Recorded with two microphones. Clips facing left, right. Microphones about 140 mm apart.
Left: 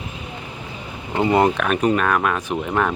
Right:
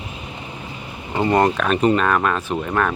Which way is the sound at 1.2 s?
10° left (ahead or behind).